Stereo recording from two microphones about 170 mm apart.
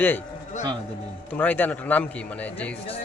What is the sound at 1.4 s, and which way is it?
Speech, 10° left (ahead or behind).